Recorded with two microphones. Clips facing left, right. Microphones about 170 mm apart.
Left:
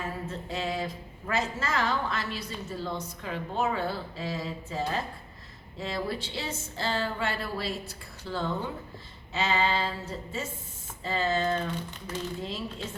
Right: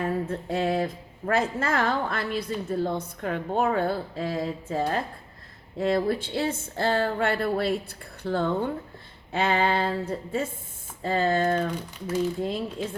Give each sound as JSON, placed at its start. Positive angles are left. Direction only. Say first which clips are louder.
{"t": 0.0, "sound": "speech", "louder": "right 8 dB", "side_deg": -55}
{"t": 11.8, "sound": "speech", "louder": "right 7 dB", "side_deg": -10}
{"t": 12.4, "sound": "speech", "louder": "right 7 dB", "side_deg": -55}